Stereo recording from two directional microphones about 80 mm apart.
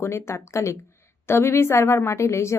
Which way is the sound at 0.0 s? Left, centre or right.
Left.